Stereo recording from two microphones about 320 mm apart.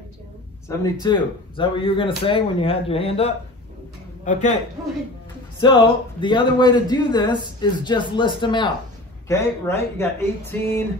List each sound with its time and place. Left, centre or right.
0.7 s a man's voice: centre
5.6 s speech: centre